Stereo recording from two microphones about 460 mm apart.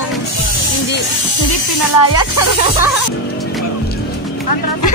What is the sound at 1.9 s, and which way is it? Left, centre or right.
Snake, left.